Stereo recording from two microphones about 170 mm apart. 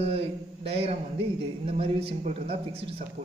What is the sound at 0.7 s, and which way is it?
A man's voice, 35° right (ahead or behind).